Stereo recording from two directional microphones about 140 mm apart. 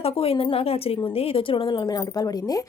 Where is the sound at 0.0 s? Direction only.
45° left (ahead or behind).